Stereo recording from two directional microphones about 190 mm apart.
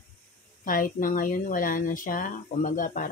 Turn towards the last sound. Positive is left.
turn(degrees=45)  # may be behind; listen again after turning